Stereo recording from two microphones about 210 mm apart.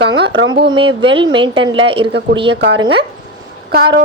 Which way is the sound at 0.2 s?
60° right (ahead or behind).